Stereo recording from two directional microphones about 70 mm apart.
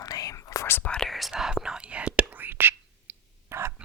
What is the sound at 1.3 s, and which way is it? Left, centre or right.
Whispering, centre.